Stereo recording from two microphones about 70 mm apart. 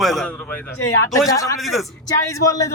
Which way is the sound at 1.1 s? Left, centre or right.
Left.